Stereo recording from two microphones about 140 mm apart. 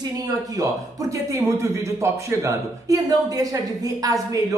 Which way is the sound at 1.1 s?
20° right (ahead or behind).